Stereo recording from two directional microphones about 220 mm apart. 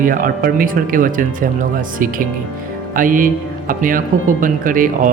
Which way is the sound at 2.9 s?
40° right (ahead or behind).